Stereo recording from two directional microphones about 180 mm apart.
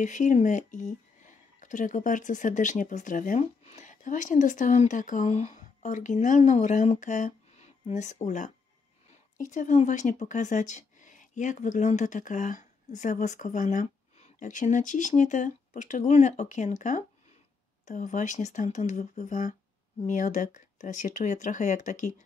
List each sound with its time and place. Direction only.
0.0 s speech: 45° left (ahead or behind)
9.5 s speech: 45° left (ahead or behind)